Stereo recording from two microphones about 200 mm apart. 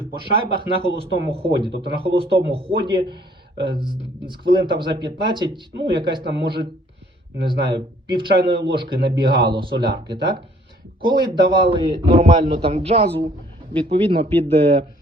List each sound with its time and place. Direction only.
0.3 s a man's voice: 25° left (ahead or behind)
0.9 s speech: 30° right (ahead or behind)
7.4 s speech: 25° right (ahead or behind)
11.0 s speech: 25° right (ahead or behind)